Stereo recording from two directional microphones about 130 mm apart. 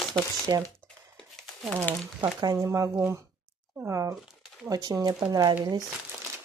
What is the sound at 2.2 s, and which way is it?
Speech, 25° right (ahead or behind).